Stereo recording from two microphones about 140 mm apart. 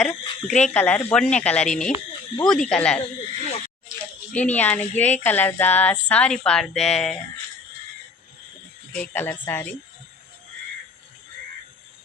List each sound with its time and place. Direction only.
0.0 s speech: centre (ahead or behind)
4.3 s speech: 10° left (ahead or behind)
9.0 s speech: 15° left (ahead or behind)